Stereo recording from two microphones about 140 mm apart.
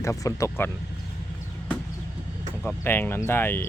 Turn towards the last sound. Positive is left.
turn(degrees=15)  # may be behind; listen again after turning